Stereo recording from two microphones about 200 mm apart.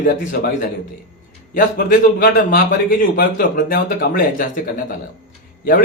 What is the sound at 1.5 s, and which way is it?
A man's voice, 45° left (ahead or behind).